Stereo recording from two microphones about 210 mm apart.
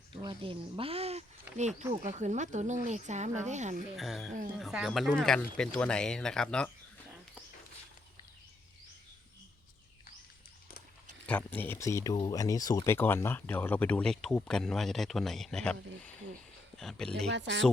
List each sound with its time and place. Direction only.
0.2 s speech: 25° right (ahead or behind)
3.9 s speech: centre (ahead or behind)
11.3 s speech: 10° left (ahead or behind)
17.3 s speech: 55° right (ahead or behind)